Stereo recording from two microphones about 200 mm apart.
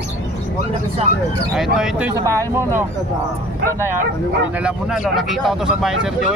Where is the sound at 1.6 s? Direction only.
Centre (ahead or behind).